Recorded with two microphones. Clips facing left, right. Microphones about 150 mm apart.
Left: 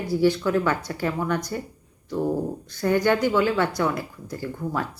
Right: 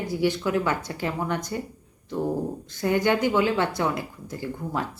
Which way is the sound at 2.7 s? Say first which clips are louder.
Left 2 dB; 20° right (ahead or behind).